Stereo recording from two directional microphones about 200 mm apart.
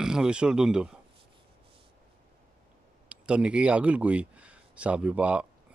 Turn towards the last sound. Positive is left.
turn(degrees=-5)  # may be behind; listen again after turning